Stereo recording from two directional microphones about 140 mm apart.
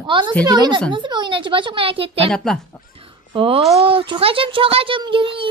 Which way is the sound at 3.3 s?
40° right (ahead or behind).